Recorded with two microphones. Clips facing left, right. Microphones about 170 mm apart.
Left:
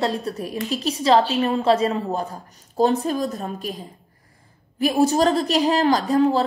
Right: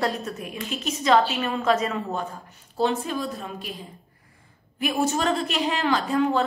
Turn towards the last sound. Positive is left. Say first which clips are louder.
# left 4 dB
turn(degrees=35)  # may be behind; listen again after turning